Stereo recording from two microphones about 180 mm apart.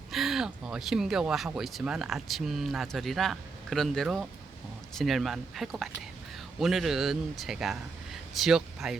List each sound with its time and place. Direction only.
0.1 s speech: centre (ahead or behind)